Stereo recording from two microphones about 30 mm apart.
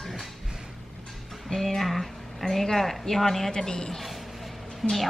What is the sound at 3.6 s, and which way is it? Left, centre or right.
Speech, centre.